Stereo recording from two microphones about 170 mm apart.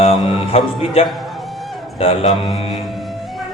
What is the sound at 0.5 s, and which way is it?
Speech, 35° left (ahead or behind).